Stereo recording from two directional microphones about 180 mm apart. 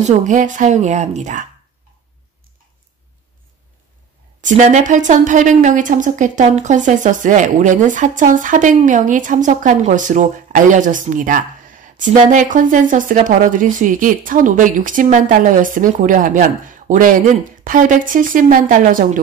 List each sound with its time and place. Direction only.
0.0 s a woman's voice: 40° right (ahead or behind)
4.4 s a woman's voice: 45° right (ahead or behind)